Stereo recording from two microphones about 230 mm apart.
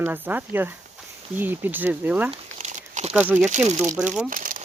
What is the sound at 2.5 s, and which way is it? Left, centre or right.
Crumpling, right.